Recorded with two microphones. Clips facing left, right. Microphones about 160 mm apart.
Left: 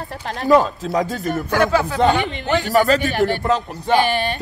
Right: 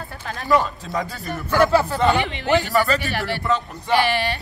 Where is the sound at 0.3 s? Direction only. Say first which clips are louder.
Left 5 dB; 35° left (ahead or behind).